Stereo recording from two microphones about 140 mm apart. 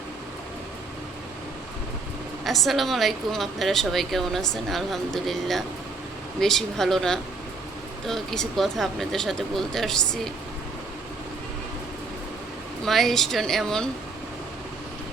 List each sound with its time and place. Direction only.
2.4 s a woman's voice: centre (ahead or behind)
12.8 s a woman's voice: centre (ahead or behind)